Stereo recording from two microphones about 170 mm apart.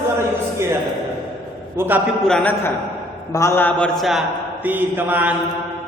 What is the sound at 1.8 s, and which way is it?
Speech, 10° right (ahead or behind).